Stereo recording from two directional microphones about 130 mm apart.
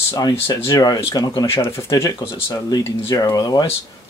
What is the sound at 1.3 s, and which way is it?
Speech, 45° left (ahead or behind).